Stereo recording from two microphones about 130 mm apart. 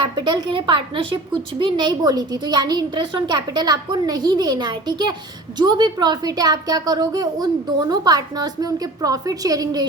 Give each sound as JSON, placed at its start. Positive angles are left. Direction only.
{"t": 0.0, "sound": "a woman's voice", "side_deg": -35}